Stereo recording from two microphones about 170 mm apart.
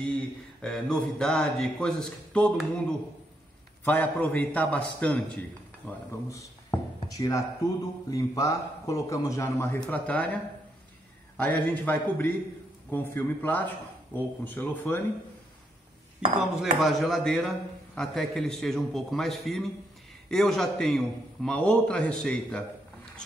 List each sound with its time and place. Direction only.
0.0 s a man's voice: 5° left (ahead or behind)
3.8 s a man's voice: 10° left (ahead or behind)
11.3 s a man's voice: 10° left (ahead or behind)
16.5 s a man's voice: centre (ahead or behind)